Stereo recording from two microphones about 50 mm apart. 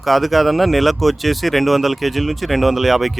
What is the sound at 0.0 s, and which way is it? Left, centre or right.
Speech, centre.